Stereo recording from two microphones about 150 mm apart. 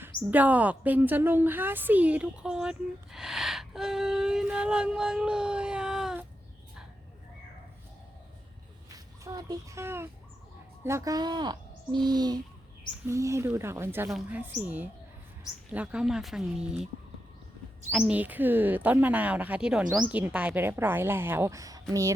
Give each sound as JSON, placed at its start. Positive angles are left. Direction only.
{"t": 0.0, "sound": "a woman's voice", "side_deg": -10}
{"t": 9.2, "sound": "a child's voice", "side_deg": -25}
{"t": 17.9, "sound": "speech", "side_deg": -10}